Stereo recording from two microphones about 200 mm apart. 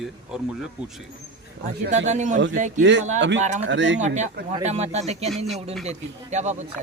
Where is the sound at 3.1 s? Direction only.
65° right (ahead or behind).